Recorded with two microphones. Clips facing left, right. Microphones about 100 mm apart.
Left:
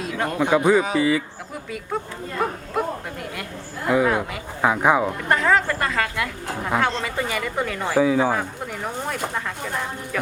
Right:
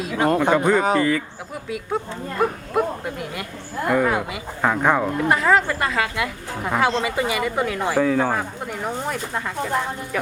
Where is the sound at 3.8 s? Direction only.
5° left (ahead or behind).